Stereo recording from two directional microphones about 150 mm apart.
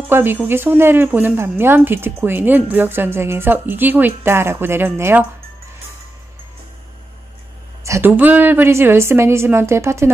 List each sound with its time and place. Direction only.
0.1 s speech: 15° right (ahead or behind)
7.8 s speech: 15° right (ahead or behind)